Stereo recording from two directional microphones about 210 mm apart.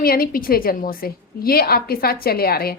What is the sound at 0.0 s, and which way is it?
A woman's voice, 45° left (ahead or behind).